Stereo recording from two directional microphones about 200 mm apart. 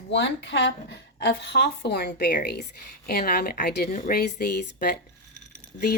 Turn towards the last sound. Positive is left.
turn(degrees=50)  # may be behind; listen again after turning